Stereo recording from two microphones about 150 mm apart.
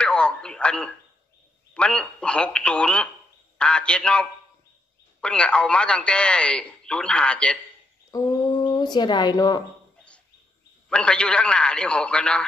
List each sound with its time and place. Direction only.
0.0 s speech: 5° left (ahead or behind)
8.1 s speech: 20° left (ahead or behind)
10.9 s speech: 5° left (ahead or behind)